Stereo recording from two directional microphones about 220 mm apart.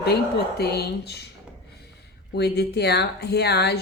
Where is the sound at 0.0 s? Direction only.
45° left (ahead or behind).